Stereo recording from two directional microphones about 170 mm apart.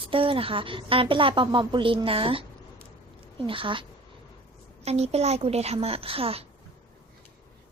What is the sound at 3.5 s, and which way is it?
Speech, 30° right (ahead or behind).